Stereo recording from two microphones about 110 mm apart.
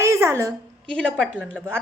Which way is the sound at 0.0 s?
25° right (ahead or behind).